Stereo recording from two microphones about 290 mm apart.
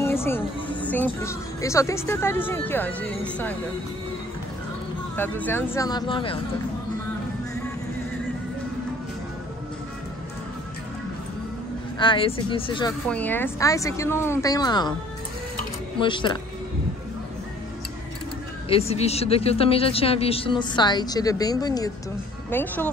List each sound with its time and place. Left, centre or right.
0.0 s music: centre
0.8 s speech: centre
5.1 s speech: centre
12.0 s speech: centre
13.1 s speech: centre
16.0 s speech: centre
18.7 s speech: left